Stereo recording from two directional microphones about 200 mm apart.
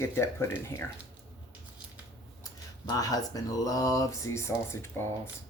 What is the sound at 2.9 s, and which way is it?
Speech, 20° left (ahead or behind).